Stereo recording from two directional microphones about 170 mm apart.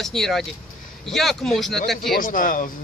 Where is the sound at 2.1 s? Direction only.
55° left (ahead or behind).